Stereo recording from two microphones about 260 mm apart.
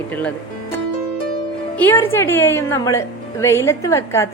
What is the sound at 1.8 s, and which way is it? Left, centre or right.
A woman's voice, centre.